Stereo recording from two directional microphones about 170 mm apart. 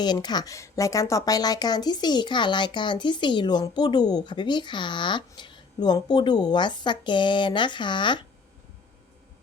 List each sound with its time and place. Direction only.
0.0 s a woman's voice: 25° left (ahead or behind)